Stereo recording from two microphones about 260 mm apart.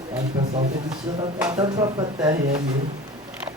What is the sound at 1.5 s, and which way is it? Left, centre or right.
Speech, centre.